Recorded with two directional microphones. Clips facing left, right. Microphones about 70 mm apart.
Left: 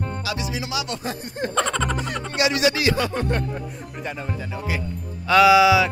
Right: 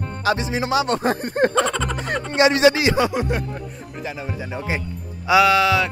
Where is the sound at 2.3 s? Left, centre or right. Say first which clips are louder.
Right 6 dB; right; by 4.5 s centre.